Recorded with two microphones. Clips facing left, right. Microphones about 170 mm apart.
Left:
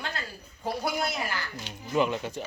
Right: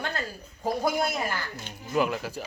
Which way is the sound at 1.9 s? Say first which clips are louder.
Even; 5° right (ahead or behind).